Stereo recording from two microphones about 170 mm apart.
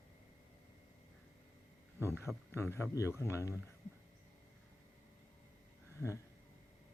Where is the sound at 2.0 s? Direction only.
15° right (ahead or behind).